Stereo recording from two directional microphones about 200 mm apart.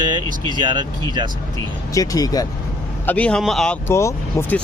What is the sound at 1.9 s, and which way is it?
Speech, 20° left (ahead or behind).